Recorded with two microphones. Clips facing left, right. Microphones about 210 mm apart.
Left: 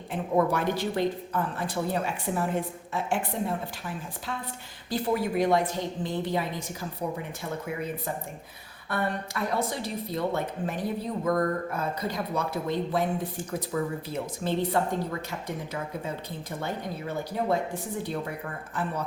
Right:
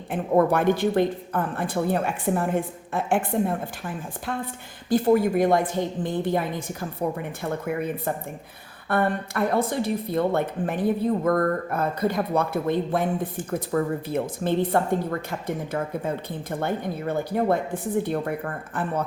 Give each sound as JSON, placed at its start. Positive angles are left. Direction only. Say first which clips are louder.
{"t": 0.1, "sound": "speech", "louder": "right 5 dB", "side_deg": -55}